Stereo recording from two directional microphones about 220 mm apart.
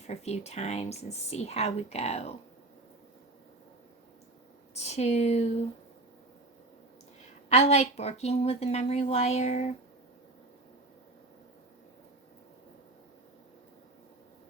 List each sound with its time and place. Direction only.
0.1 s speech: 30° left (ahead or behind)
4.7 s speech: 30° left (ahead or behind)
7.5 s speech: 30° left (ahead or behind)